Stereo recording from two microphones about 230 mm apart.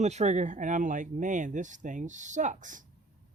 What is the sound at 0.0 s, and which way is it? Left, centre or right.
Speech, right.